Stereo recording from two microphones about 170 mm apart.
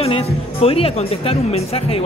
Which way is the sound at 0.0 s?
35° left (ahead or behind).